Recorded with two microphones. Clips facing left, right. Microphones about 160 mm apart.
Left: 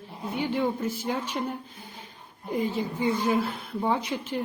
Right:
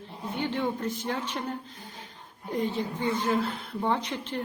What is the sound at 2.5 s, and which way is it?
Speech, 10° left (ahead or behind).